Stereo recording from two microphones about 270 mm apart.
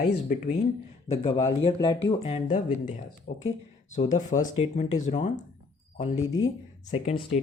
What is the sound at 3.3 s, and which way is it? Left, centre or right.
Speech, left.